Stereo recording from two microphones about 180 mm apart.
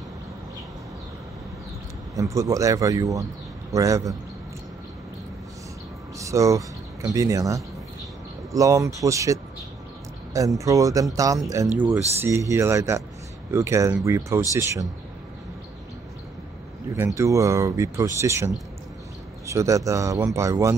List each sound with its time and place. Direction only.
2.1 s speech: 15° right (ahead or behind)
6.1 s speech: 15° right (ahead or behind)
10.6 s speech: 20° right (ahead or behind)
16.9 s speech: 15° right (ahead or behind)